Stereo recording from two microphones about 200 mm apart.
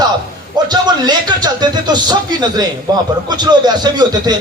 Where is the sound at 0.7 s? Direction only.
20° right (ahead or behind).